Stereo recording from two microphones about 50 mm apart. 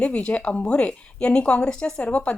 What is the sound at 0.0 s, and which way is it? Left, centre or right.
A woman's voice, left.